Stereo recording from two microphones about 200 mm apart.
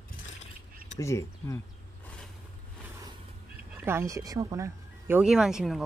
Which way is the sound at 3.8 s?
10° right (ahead or behind).